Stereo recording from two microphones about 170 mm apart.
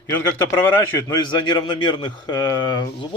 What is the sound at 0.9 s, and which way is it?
Speech, 20° left (ahead or behind).